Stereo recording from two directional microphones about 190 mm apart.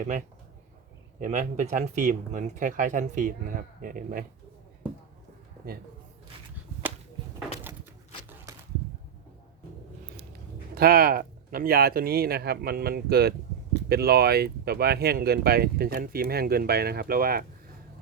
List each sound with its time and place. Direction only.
1.2 s speech: 40° right (ahead or behind)
6.8 s whip: 10° right (ahead or behind)
7.7 s a sound: 10° right (ahead or behind)
10.8 s speech: 55° right (ahead or behind)